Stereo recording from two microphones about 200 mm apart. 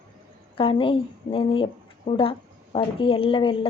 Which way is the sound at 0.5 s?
25° left (ahead or behind).